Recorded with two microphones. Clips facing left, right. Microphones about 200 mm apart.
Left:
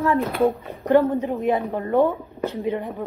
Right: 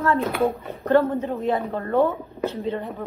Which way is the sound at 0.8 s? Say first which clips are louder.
Left 1 dB; 15° left (ahead or behind).